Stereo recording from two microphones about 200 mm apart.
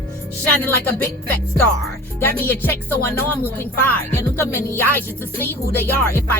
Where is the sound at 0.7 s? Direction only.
10° left (ahead or behind).